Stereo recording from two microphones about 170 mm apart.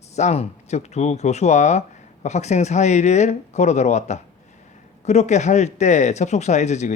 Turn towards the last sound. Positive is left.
turn(degrees=45)  # may be behind; listen again after turning